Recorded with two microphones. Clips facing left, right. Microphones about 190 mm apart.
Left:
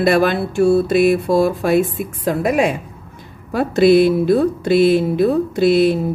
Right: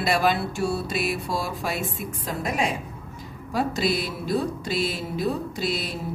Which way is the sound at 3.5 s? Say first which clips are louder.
Left 12 dB; 60° left (ahead or behind).